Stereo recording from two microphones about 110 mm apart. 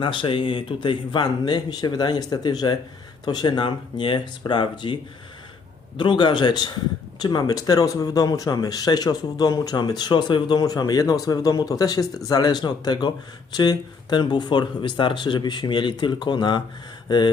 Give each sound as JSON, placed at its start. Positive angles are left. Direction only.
{"t": 0.0, "sound": "speech", "side_deg": 50}
{"t": 6.0, "sound": "speech", "side_deg": 45}